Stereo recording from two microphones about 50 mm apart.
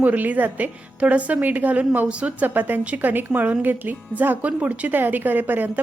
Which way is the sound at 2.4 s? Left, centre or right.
Right.